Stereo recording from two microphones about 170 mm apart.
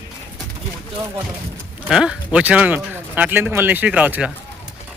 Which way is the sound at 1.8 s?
5° right (ahead or behind).